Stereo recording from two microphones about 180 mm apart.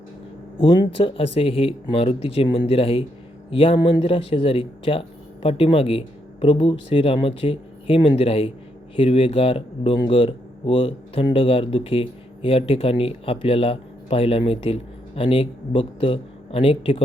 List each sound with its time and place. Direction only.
0.6 s speech: 25° left (ahead or behind)